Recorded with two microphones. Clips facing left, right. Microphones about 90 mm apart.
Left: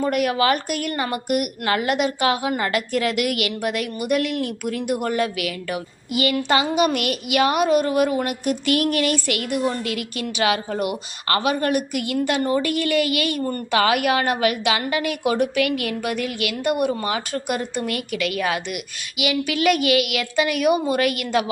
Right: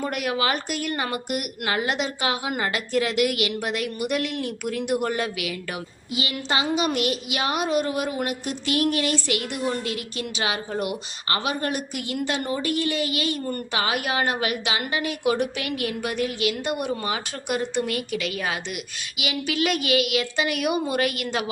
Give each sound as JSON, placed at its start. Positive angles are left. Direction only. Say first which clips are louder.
{"t": 0.0, "sound": "a woman's voice", "louder": "left 5 dB", "side_deg": 50}